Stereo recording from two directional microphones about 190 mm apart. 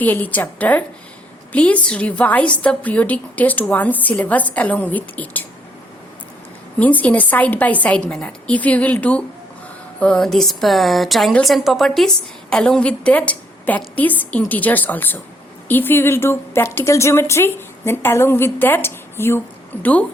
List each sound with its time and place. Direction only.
0.0 s a woman's voice: 10° left (ahead or behind)
6.7 s a woman's voice: 10° left (ahead or behind)